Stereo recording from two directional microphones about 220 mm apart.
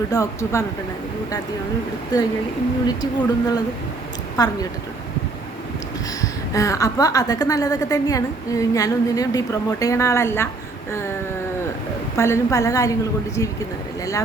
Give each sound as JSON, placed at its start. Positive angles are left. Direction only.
{"t": 0.1, "sound": "a woman's voice", "side_deg": 15}
{"t": 2.8, "sound": "a woman's voice", "side_deg": 20}
{"t": 6.2, "sound": "a woman's voice", "side_deg": 15}
{"t": 12.1, "sound": "a woman's voice", "side_deg": 10}